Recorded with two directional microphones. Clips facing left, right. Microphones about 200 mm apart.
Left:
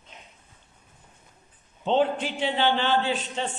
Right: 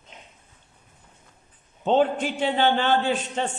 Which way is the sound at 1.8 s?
45° right (ahead or behind).